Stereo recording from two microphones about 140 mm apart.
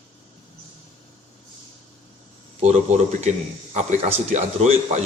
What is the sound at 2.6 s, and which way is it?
A man's voice, 50° right (ahead or behind).